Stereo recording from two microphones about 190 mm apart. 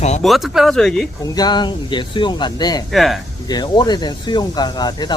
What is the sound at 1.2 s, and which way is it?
Speech, 20° left (ahead or behind).